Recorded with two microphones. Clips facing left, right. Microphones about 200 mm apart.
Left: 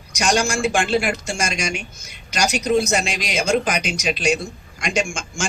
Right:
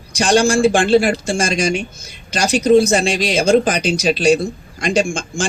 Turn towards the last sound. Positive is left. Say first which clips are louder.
# right 6 dB
turn(degrees=-35)  # may be behind; listen again after turning